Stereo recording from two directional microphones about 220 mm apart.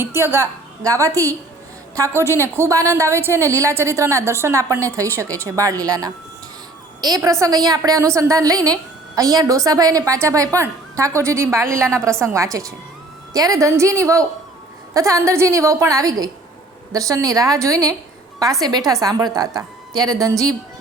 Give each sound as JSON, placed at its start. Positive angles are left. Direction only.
{"t": 0.0, "sound": "a woman's voice", "side_deg": -10}